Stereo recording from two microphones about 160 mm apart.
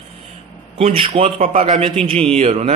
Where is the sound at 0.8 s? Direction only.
35° right (ahead or behind).